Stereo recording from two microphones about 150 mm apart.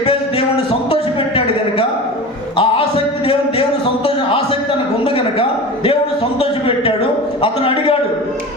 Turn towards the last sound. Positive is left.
turn(degrees=40)  # may be behind; listen again after turning